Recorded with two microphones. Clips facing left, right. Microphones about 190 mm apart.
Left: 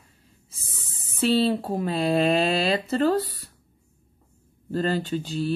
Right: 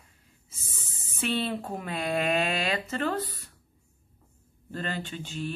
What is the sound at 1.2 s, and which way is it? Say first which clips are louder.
Speech: left 8 dB; 30° left (ahead or behind).